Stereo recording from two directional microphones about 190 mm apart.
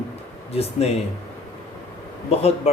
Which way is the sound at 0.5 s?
35° left (ahead or behind).